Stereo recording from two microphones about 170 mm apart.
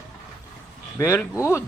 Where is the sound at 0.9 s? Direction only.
15° left (ahead or behind).